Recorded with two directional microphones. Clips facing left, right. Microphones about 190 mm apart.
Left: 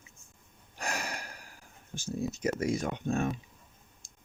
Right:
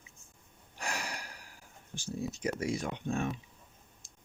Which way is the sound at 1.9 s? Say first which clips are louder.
Left 3 dB; 45° left (ahead or behind).